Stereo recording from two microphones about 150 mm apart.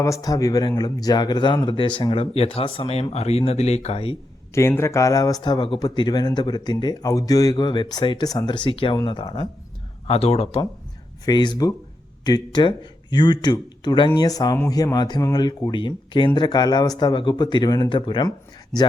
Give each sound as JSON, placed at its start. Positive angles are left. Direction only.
{"t": 0.0, "sound": "speech", "side_deg": 20}
{"t": 4.5, "sound": "speech", "side_deg": 20}
{"t": 10.1, "sound": "speech", "side_deg": 45}
{"t": 11.3, "sound": "speech", "side_deg": 30}